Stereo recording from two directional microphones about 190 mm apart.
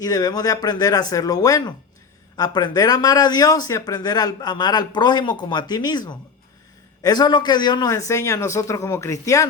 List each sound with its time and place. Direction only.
0.0 s a man's voice: 20° left (ahead or behind)